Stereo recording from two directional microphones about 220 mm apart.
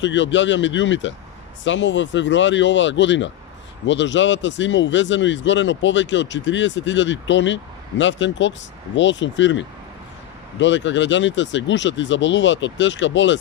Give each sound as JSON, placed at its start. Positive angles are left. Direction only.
{"t": 0.0, "sound": "speech", "side_deg": 55}